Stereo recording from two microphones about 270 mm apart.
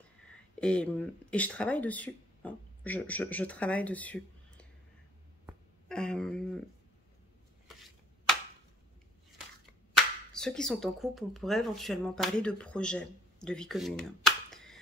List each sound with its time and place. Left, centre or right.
0.6 s speech: centre
5.5 s a sound: centre
9.9 s speech: centre